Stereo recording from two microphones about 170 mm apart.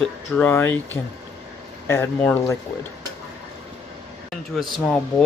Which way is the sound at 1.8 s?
15° left (ahead or behind).